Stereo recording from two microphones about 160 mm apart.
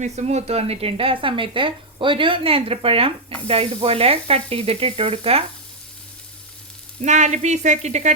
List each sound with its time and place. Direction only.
0.0 s speech: 45° right (ahead or behind)
7.0 s speech: 50° right (ahead or behind)